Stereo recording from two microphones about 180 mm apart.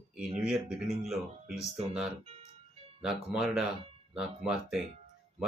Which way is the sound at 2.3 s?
35° right (ahead or behind).